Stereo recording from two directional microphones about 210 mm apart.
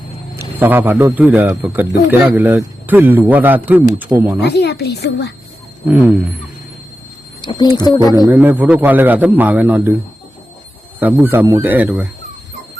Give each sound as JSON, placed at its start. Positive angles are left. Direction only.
{"t": 0.3, "sound": "a man's voice", "side_deg": -10}
{"t": 4.4, "sound": "a woman's voice", "side_deg": 55}
{"t": 5.9, "sound": "a man's voice", "side_deg": -5}
{"t": 7.4, "sound": "speech", "side_deg": 20}
{"t": 8.3, "sound": "a man's voice", "side_deg": -10}
{"t": 11.0, "sound": "a man's voice", "side_deg": -10}